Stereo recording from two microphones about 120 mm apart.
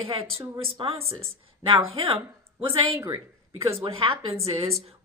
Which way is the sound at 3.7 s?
55° right (ahead or behind).